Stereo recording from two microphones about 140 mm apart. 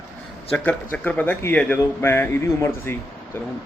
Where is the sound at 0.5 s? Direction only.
10° left (ahead or behind).